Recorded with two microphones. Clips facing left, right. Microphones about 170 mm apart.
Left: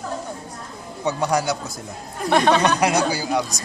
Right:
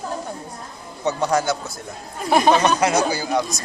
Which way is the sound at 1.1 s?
10° left (ahead or behind).